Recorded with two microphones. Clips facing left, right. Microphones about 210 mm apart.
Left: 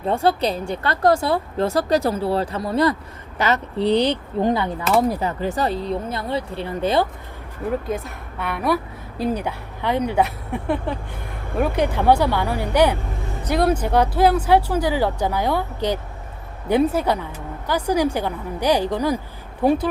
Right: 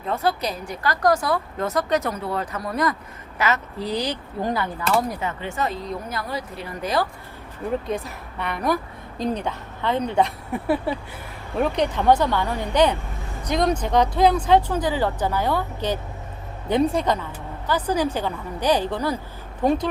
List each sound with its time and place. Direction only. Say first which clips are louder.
0.1 s speech: left 4 dB; 30° left (ahead or behind)
4.9 s speech: left 8 dB; 35° left (ahead or behind)
7.9 s a woman's voice: left 1 dB; centre (ahead or behind)
10.9 s a sound: right 1 dB; 5° right (ahead or behind)
11.5 s speech: left 1 dB; 5° left (ahead or behind)